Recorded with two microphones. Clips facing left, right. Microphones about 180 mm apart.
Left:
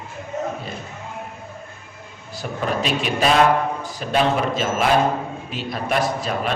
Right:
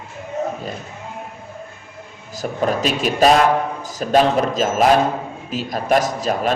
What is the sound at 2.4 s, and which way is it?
A man's voice, 40° right (ahead or behind).